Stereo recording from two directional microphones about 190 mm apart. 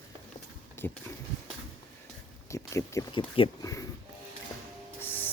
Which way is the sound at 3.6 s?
15° left (ahead or behind).